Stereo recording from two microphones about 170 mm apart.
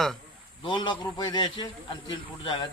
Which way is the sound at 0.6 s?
30° left (ahead or behind).